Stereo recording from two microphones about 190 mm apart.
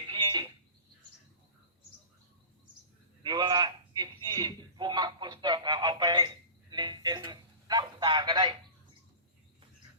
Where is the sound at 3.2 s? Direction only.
20° right (ahead or behind).